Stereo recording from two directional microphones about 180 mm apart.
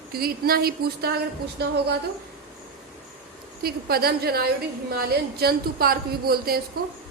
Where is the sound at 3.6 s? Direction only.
60° right (ahead or behind).